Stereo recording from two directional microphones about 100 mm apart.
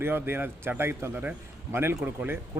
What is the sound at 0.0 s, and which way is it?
A man's voice, 20° right (ahead or behind).